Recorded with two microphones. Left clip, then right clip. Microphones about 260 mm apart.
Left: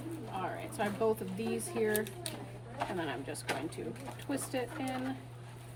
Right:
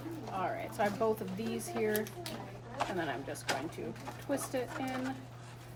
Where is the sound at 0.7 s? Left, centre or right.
Centre.